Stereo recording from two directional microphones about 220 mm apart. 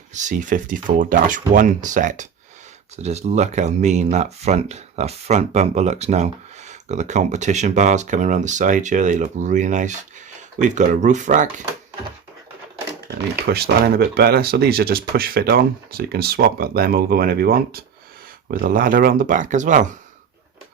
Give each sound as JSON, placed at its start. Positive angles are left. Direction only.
{"t": 0.1, "sound": "speech", "side_deg": -35}
{"t": 13.1, "sound": "speech", "side_deg": -45}